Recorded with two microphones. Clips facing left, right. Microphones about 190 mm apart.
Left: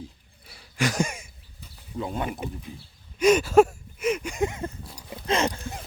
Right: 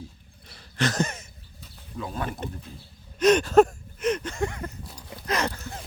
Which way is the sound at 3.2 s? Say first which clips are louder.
Even; 10° left (ahead or behind).